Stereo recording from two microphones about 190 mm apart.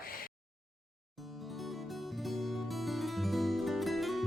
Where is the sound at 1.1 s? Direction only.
Centre (ahead or behind).